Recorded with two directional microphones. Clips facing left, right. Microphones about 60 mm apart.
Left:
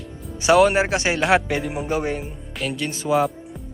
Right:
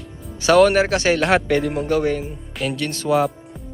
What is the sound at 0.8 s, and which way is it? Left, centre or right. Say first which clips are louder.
Speech: right 3 dB; left.